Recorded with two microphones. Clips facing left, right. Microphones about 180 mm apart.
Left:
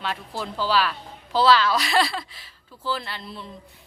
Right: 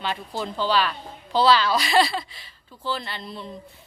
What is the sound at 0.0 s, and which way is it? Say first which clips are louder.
A woman's voice: right 2 dB; centre (ahead or behind).